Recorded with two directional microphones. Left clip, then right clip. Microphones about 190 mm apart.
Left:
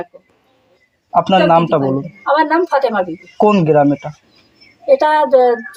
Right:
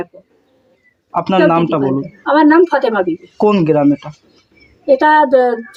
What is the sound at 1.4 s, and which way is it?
Speech, 30° left (ahead or behind).